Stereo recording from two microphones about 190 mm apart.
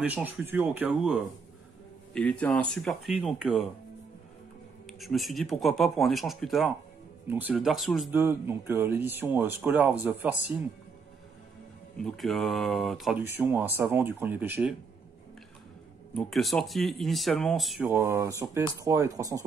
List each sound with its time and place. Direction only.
0.0 s speech: 10° right (ahead or behind)
2.1 s speech: 5° left (ahead or behind)
4.8 s speech: centre (ahead or behind)
8.1 s speech: 10° right (ahead or behind)
12.0 s speech: centre (ahead or behind)
13.2 s speech: 10° right (ahead or behind)
16.2 s speech: centre (ahead or behind)
17.8 s speech: 15° right (ahead or behind)